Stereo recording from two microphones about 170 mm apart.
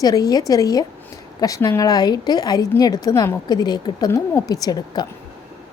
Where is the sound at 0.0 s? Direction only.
20° left (ahead or behind).